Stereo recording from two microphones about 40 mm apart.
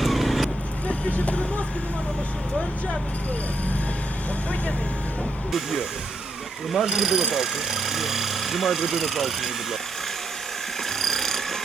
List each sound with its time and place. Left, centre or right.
0.0 s vehicle: centre
1.1 s speech: left
5.5 s speech: centre
10.8 s a sound: centre